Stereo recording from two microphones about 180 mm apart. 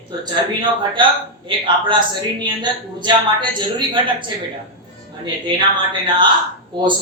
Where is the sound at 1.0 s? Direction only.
25° right (ahead or behind).